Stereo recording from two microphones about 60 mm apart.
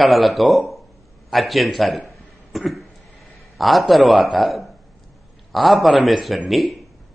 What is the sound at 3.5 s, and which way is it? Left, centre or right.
A man's voice, centre.